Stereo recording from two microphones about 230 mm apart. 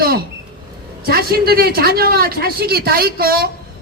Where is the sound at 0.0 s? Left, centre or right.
Right.